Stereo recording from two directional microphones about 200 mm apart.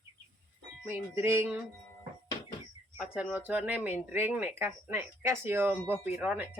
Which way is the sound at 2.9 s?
5° right (ahead or behind).